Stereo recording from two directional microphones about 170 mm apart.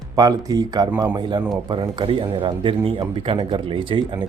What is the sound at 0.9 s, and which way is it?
Speech, 10° right (ahead or behind).